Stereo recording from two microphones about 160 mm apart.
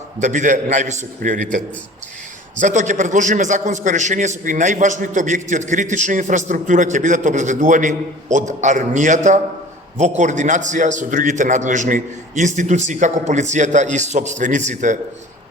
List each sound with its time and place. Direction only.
0.2 s a man's voice: 50° right (ahead or behind)
2.6 s a man's voice: 50° right (ahead or behind)